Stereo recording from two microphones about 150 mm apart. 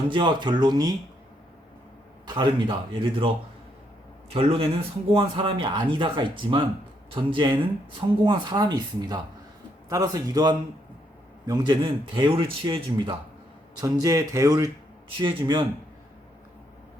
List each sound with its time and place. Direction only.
0.1 s a man's voice: 30° right (ahead or behind)
2.2 s a man's voice: 30° right (ahead or behind)
4.4 s a man's voice: 35° right (ahead or behind)
13.8 s speech: 20° right (ahead or behind)